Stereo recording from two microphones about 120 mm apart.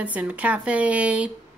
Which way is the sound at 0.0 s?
10° right (ahead or behind).